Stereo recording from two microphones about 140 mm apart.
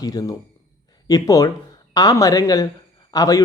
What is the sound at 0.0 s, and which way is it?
Speech, 25° left (ahead or behind).